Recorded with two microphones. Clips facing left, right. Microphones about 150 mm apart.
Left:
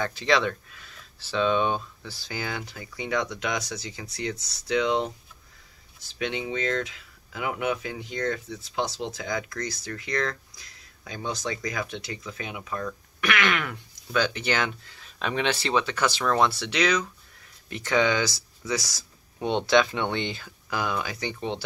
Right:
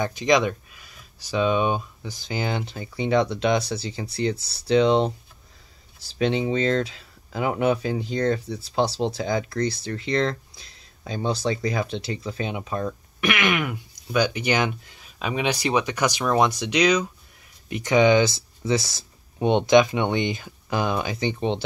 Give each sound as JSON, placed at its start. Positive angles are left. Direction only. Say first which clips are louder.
{"t": 0.0, "sound": "speech", "louder": "right 4 dB", "side_deg": -15}